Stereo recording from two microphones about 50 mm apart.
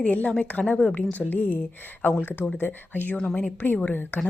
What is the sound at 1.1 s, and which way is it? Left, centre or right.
A woman's voice, left.